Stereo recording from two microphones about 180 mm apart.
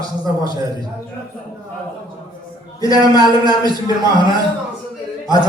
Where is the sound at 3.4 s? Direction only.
20° right (ahead or behind).